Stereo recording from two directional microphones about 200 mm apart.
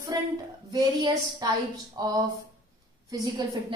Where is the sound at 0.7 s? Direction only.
20° right (ahead or behind).